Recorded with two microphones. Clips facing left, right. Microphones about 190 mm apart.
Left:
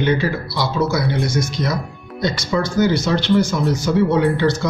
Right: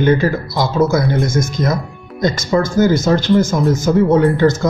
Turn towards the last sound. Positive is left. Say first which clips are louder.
# right 4 dB
turn(degrees=-45)  # may be behind; listen again after turning